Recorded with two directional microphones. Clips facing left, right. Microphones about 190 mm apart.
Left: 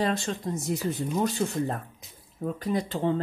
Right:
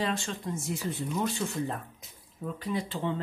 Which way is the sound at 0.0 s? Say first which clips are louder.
Left 4 dB; 40° left (ahead or behind).